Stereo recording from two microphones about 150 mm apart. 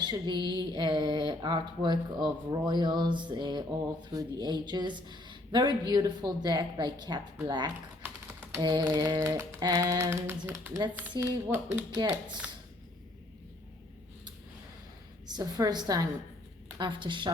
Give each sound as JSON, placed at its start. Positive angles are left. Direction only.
{"t": 0.0, "sound": "a sound", "side_deg": -30}
{"t": 0.5, "sound": "speech", "side_deg": -30}
{"t": 15.3, "sound": "a woman's voice", "side_deg": -25}